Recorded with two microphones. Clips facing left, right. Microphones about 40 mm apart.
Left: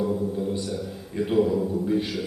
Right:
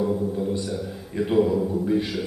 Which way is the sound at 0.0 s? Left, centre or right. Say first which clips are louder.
Right 2 dB; centre.